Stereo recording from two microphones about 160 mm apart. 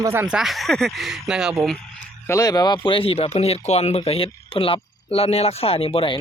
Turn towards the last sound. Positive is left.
turn(degrees=35)  # may be behind; listen again after turning